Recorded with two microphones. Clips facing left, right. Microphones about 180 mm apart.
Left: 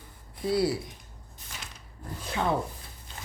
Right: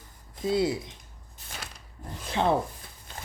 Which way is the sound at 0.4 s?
20° right (ahead or behind).